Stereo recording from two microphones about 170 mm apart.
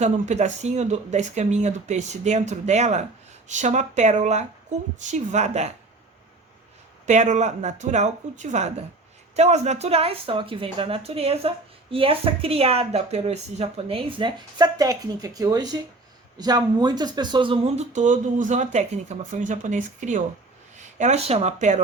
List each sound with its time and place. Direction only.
0.0 s speech: 40° right (ahead or behind)
7.0 s speech: 45° right (ahead or behind); by 17.6 s 30° right (ahead or behind)
17.7 s speech: 45° right (ahead or behind)